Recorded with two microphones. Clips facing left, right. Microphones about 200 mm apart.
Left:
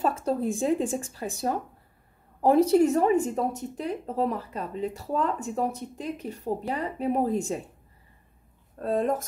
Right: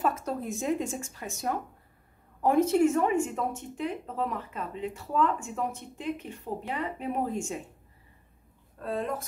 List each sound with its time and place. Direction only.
0.0 s speech: 30° left (ahead or behind)
8.7 s a woman's voice: 40° left (ahead or behind)